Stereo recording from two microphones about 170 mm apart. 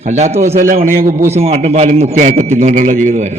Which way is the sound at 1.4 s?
40° right (ahead or behind).